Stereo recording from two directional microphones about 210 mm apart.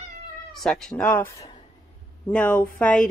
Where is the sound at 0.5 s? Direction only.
Centre (ahead or behind).